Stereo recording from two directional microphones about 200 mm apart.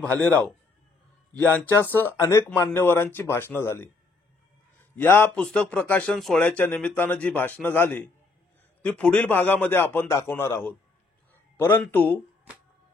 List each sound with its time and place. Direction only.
0.0 s a man's voice: 5° left (ahead or behind)
4.9 s a man's voice: 10° left (ahead or behind)